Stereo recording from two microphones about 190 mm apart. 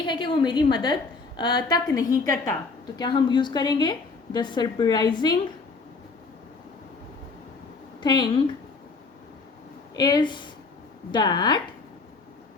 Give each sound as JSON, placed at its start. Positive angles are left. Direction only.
{"t": 0.0, "sound": "a woman's voice", "side_deg": 25}
{"t": 8.0, "sound": "a woman's voice", "side_deg": 20}
{"t": 9.9, "sound": "a woman's voice", "side_deg": 20}